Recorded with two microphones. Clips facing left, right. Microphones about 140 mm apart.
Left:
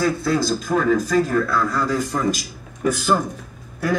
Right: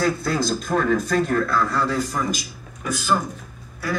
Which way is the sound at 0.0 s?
Centre (ahead or behind).